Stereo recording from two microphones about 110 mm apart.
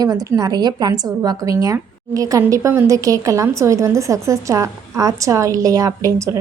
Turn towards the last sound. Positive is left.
turn(degrees=-30)  # may be behind; listen again after turning